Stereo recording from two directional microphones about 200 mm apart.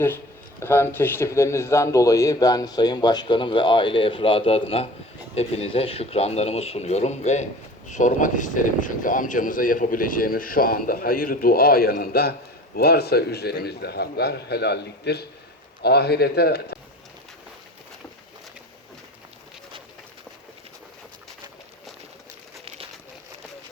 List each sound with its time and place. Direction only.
0.6 s a man's voice: 10° left (ahead or behind); by 16.7 s 55° left (ahead or behind)